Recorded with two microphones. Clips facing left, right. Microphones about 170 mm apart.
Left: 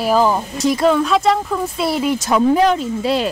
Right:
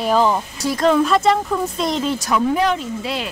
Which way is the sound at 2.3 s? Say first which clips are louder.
Left 5 dB; 35° left (ahead or behind).